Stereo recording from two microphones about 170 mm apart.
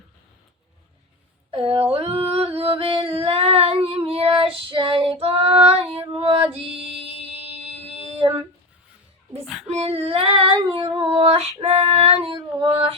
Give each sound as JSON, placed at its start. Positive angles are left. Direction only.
{"t": 1.5, "sound": "speech", "side_deg": -35}
{"t": 1.9, "sound": "singing", "side_deg": -35}
{"t": 7.9, "sound": "a sound", "side_deg": -35}
{"t": 9.6, "sound": "female singing", "side_deg": -35}